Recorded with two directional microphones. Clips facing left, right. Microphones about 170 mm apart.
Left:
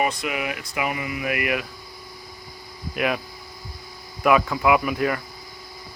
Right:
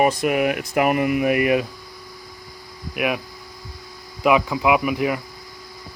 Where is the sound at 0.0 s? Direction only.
45° right (ahead or behind).